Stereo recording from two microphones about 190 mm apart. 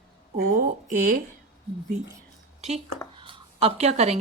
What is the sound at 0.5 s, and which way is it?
Speech, 45° right (ahead or behind).